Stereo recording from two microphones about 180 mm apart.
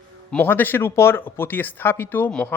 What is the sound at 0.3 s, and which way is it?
Speech, 10° left (ahead or behind).